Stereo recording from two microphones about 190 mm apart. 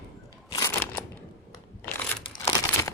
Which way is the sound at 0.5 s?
15° left (ahead or behind).